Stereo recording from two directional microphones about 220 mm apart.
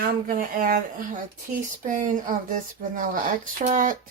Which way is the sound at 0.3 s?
40° right (ahead or behind).